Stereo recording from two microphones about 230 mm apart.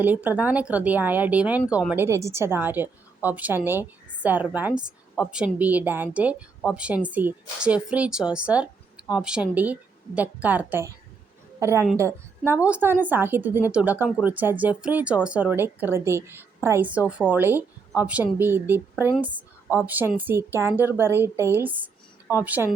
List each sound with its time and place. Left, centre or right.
0.0 s a woman's voice: centre